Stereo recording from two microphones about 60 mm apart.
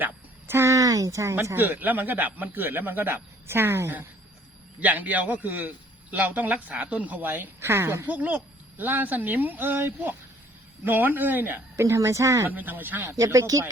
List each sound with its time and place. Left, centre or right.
0.0 s a sound: right
0.7 s speech: right
1.5 s speech: right
4.8 s a man's voice: right
8.0 s a man's voice: right
11.8 s speech: right
12.5 s speech: right
13.1 s speech: right